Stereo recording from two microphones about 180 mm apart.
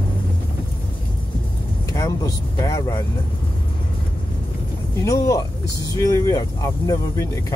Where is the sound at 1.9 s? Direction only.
20° left (ahead or behind).